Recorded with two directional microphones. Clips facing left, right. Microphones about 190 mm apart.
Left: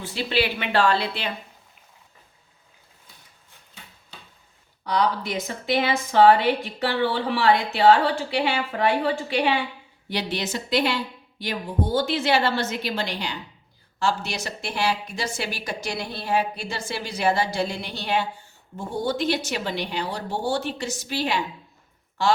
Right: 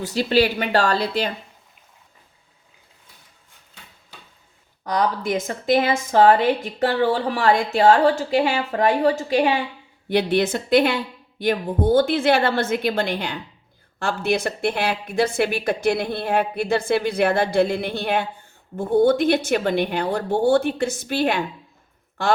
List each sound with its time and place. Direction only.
0.0 s speech: 40° right (ahead or behind)
4.9 s a woman's voice: 45° right (ahead or behind)